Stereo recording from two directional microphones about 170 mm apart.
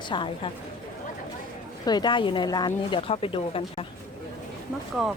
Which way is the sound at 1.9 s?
25° left (ahead or behind).